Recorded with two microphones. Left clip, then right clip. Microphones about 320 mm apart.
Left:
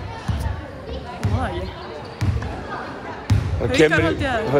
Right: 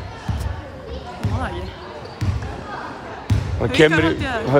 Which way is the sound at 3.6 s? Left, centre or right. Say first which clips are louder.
Even; right.